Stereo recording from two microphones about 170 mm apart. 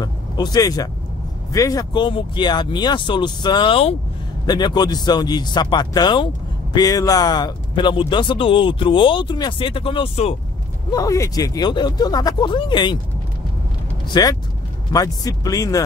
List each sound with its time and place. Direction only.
0.0 s vehicle: 25° left (ahead or behind)
1.5 s speech: 20° left (ahead or behind)
10.9 s speech: 20° left (ahead or behind)
14.0 s speech: 25° left (ahead or behind)